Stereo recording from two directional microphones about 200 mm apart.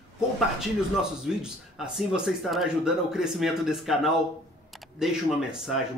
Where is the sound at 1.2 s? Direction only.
5° right (ahead or behind).